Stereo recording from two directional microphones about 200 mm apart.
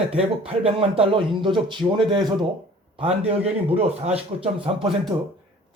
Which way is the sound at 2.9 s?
30° right (ahead or behind).